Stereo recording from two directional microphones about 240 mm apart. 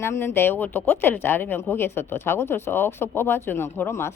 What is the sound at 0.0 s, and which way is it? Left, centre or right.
Speech, centre.